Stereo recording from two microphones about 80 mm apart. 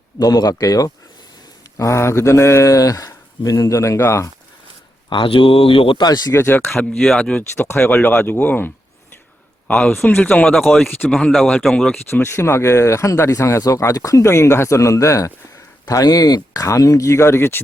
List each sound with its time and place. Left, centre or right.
0.2 s speech: left
1.8 s speech: left
5.0 s speech: left
6.1 s speech: left
6.3 s speech: left
6.7 s speech: centre
7.5 s speech: left
7.8 s speech: left
9.7 s speech: centre
12.1 s speech: left